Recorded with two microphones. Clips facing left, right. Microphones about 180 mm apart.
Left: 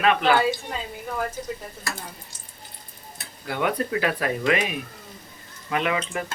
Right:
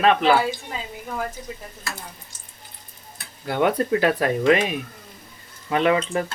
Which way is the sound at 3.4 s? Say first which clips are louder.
Right 4 dB; 30° right (ahead or behind).